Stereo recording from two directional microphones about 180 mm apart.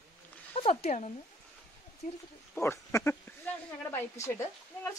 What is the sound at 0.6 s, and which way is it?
Speech, 35° left (ahead or behind).